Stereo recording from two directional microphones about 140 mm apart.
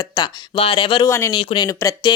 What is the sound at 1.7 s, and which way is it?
Speech, 20° left (ahead or behind).